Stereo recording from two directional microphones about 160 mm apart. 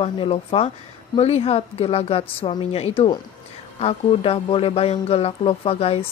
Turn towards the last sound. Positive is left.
turn(degrees=35)  # may be behind; listen again after turning